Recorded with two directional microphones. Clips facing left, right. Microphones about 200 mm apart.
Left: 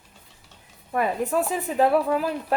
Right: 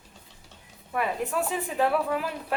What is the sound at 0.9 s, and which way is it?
Speech, 40° left (ahead or behind).